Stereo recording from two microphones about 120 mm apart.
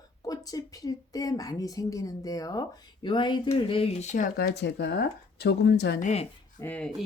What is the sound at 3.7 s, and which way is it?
Speech, 50° left (ahead or behind).